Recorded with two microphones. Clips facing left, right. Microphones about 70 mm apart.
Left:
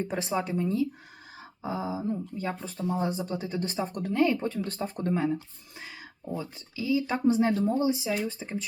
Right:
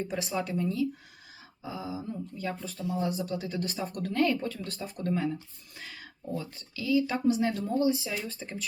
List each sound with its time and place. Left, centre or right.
0.0 s speech: left
7.7 s speech: left